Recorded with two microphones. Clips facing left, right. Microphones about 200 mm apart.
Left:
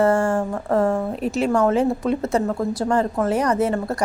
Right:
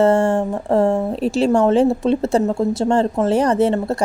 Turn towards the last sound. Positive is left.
turn(degrees=-25)  # may be behind; listen again after turning